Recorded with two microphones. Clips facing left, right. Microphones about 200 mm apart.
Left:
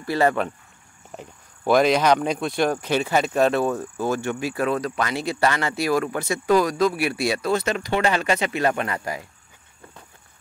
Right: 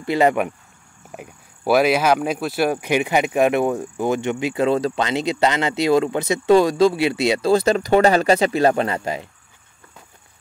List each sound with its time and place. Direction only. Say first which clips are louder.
0.0 s speech: right 3 dB; 20° right (ahead or behind)